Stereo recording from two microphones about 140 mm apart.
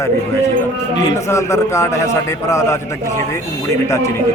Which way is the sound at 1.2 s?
20° left (ahead or behind).